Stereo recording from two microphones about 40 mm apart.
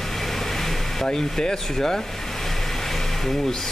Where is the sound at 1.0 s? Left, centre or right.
Centre.